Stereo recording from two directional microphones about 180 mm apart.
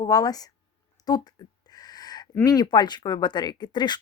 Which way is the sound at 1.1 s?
20° left (ahead or behind).